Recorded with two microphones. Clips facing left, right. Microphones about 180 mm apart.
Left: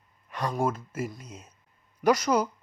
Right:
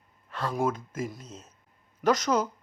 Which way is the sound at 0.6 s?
5° left (ahead or behind).